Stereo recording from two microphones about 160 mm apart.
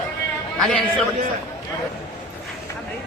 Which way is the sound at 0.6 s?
5° left (ahead or behind).